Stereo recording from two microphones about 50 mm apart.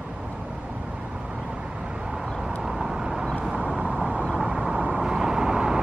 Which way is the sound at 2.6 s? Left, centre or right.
Centre.